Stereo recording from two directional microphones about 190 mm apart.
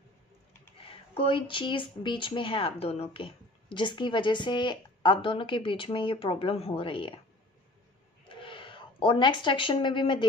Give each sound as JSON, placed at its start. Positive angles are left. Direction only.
{"t": 0.7, "sound": "speech", "side_deg": 30}
{"t": 8.3, "sound": "speech", "side_deg": 25}